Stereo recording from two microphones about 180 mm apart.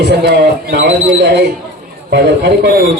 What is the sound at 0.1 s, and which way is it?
A man's voice, 65° right (ahead or behind).